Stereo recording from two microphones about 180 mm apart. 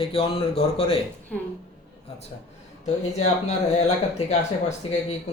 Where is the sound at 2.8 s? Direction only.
40° left (ahead or behind).